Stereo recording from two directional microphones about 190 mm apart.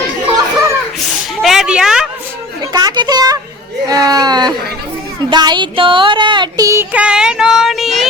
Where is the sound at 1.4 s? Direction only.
Centre (ahead or behind).